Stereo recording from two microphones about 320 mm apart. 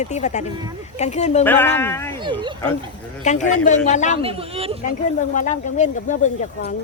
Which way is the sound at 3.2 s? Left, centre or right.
Left.